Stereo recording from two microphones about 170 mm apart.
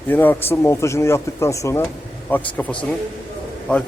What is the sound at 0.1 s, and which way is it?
Speech, 10° left (ahead or behind).